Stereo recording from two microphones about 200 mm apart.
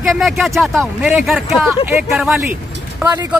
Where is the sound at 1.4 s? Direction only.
30° left (ahead or behind).